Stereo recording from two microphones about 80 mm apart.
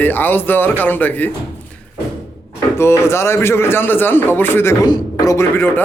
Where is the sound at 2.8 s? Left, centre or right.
Left.